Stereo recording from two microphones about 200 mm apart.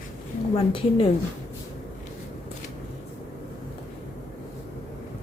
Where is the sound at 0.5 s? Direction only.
30° left (ahead or behind).